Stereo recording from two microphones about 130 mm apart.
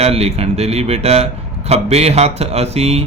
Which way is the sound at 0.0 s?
55° right (ahead or behind).